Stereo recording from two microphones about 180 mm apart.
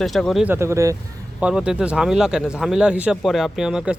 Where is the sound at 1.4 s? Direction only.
5° right (ahead or behind).